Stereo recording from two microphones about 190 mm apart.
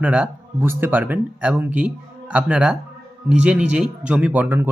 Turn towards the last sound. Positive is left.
turn(degrees=-10)  # may be behind; listen again after turning